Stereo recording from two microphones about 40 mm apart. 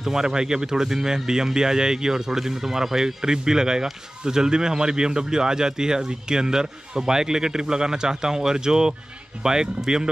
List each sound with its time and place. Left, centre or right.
0.0 s speech: centre